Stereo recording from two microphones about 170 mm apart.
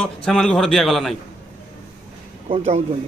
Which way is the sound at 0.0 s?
5° left (ahead or behind).